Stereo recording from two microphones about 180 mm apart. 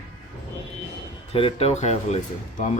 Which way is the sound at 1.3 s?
30° left (ahead or behind).